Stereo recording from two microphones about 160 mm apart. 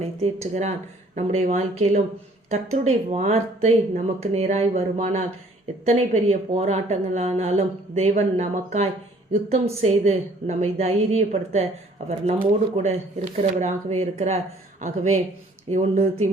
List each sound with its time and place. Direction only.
0.2 s a woman's voice: 45° right (ahead or behind)